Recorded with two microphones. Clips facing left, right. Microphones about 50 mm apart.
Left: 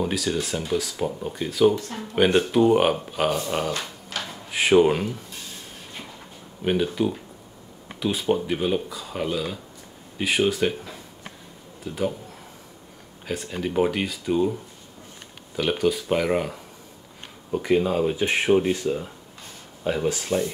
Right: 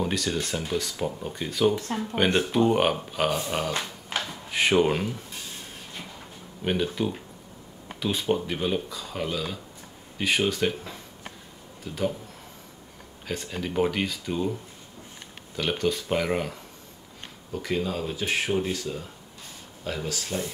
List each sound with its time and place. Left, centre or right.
0.0 s speech: centre
3.7 s a sound: right
4.3 s speech: centre
6.6 s a man's voice: centre
13.3 s speech: centre
17.5 s speech: centre